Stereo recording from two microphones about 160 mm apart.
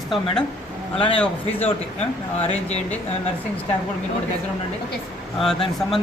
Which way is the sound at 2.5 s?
40° left (ahead or behind).